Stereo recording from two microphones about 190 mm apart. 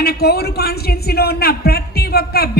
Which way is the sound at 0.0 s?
55° left (ahead or behind).